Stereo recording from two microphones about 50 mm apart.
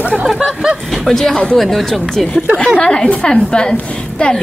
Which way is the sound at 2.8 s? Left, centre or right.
Centre.